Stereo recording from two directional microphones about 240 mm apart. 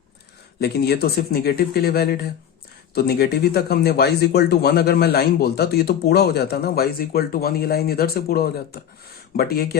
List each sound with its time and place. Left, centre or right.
0.6 s speech: left